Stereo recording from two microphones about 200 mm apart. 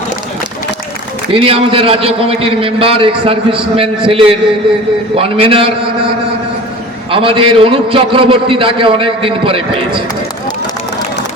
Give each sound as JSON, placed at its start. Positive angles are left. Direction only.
{"t": 1.3, "sound": "a man's voice", "side_deg": -25}
{"t": 7.1, "sound": "a man's voice", "side_deg": -25}